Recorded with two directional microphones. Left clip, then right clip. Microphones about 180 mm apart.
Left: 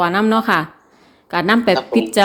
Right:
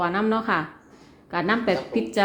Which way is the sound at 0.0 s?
60° left (ahead or behind).